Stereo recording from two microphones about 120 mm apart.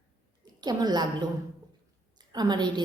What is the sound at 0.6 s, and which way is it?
Speech, 35° right (ahead or behind).